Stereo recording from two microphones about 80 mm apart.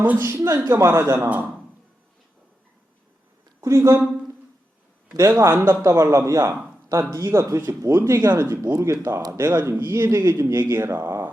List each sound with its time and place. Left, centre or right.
0.0 s a man's voice: right
3.6 s a man's voice: right
5.3 s a man's voice: right